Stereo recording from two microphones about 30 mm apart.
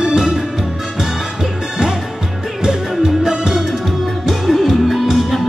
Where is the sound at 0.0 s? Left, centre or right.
Right.